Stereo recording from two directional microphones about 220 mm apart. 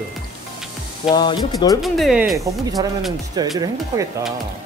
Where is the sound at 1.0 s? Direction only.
20° left (ahead or behind).